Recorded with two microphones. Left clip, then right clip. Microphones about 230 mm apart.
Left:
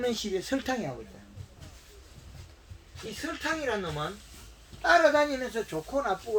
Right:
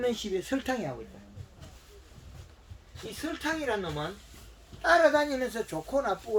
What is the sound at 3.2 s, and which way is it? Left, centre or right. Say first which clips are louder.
Speech: left 1 dB; centre.